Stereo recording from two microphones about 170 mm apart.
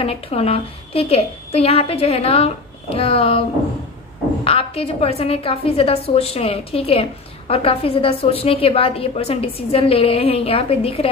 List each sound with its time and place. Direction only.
0.0 s a woman's voice: 35° left (ahead or behind)
4.5 s a woman's voice: 35° left (ahead or behind)